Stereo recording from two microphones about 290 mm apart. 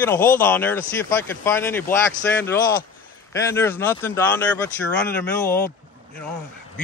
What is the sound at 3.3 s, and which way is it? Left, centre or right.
Speech, centre.